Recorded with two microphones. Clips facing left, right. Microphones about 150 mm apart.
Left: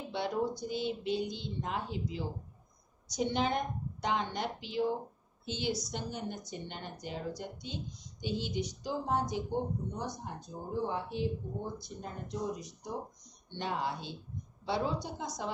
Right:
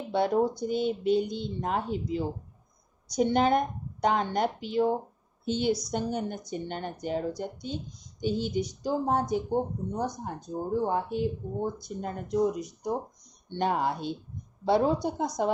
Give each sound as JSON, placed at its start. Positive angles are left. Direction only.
{"t": 0.1, "sound": "a woman's voice", "side_deg": -50}